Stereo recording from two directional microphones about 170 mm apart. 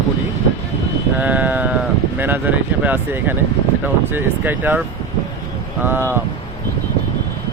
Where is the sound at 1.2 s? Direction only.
10° right (ahead or behind).